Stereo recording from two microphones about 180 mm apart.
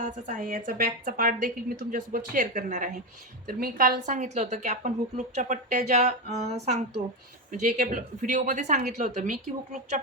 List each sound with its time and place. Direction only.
0.0 s a woman's voice: 45° right (ahead or behind)